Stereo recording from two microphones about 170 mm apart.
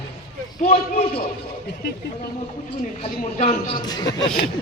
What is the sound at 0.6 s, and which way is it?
Speech, 40° left (ahead or behind).